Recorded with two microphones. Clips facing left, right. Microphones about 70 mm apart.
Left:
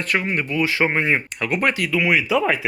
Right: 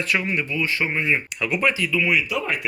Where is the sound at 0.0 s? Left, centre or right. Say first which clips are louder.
Left 1 dB; left.